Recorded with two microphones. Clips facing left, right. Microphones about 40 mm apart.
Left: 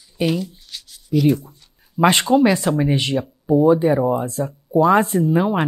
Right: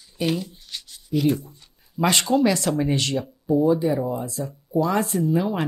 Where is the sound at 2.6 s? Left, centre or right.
Centre; by 5.6 s left.